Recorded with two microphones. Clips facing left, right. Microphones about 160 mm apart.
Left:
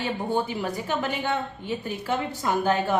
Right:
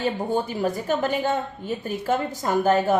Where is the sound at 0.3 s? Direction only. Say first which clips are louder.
Right 3 dB; 40° right (ahead or behind).